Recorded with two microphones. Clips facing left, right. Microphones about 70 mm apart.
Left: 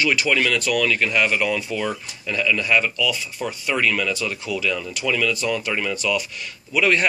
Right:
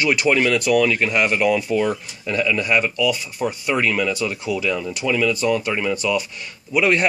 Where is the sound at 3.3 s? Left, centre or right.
Right.